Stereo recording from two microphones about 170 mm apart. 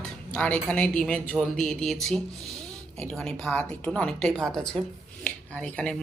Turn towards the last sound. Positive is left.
turn(degrees=5)  # may be behind; listen again after turning